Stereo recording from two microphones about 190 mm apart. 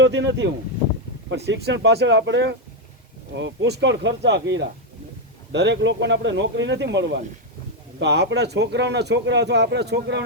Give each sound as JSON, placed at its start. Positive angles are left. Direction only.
{"t": 0.0, "sound": "a man's voice", "side_deg": -70}
{"t": 1.5, "sound": "a man's voice", "side_deg": -60}